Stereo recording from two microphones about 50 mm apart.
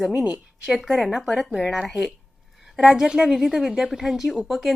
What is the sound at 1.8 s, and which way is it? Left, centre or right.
Speech, centre.